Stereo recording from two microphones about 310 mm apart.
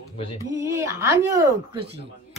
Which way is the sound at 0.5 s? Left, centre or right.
Centre.